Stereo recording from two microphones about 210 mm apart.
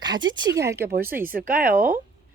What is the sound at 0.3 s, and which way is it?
Speech, 20° right (ahead or behind).